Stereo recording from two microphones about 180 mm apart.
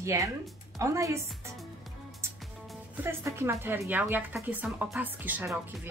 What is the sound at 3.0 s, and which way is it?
A woman's voice, 15° right (ahead or behind).